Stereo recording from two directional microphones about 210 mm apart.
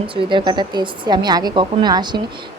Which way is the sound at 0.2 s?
25° right (ahead or behind).